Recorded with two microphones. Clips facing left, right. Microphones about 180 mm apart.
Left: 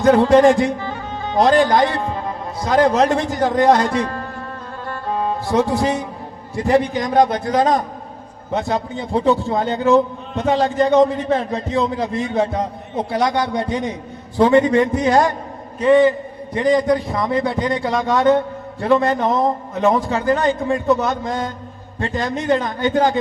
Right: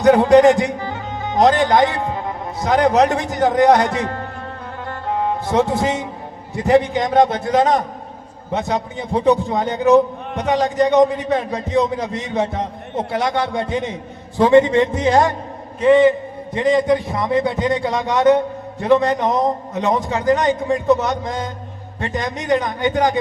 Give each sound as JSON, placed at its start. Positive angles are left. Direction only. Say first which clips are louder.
{"t": 0.0, "sound": "a man's voice", "louder": "right 1 dB", "side_deg": -20}
{"t": 4.9, "sound": "music", "louder": "right 1 dB", "side_deg": -20}
{"t": 6.6, "sound": "a man's voice", "louder": "right 2 dB", "side_deg": -20}